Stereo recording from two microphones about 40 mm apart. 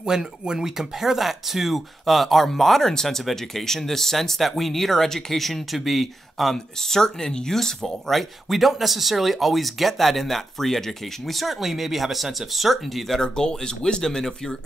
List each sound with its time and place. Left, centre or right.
0.0 s speech: centre
13.2 s speech: centre